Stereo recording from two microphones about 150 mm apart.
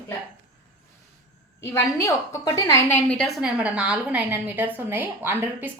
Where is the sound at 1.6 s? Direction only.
20° left (ahead or behind).